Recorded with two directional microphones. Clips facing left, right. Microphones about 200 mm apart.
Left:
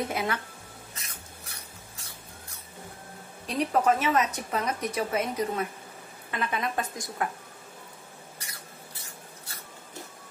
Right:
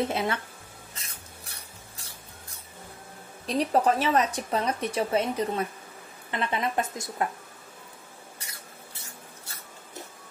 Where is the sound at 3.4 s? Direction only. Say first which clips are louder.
Right 1 dB; 35° right (ahead or behind).